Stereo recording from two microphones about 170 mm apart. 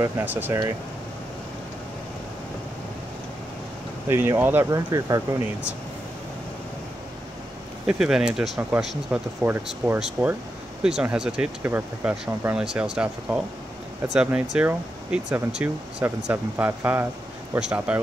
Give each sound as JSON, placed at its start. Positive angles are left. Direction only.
{"t": 0.0, "sound": "speech", "side_deg": -10}
{"t": 4.1, "sound": "speech", "side_deg": -10}
{"t": 7.8, "sound": "speech", "side_deg": -5}
{"t": 10.8, "sound": "speech", "side_deg": -5}